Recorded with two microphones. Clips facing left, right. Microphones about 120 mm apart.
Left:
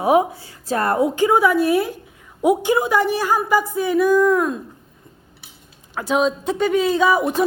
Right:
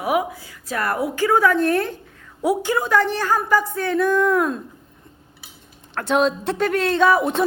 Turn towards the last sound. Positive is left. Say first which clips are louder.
# even
turn(degrees=0)  # may be behind; listen again after turning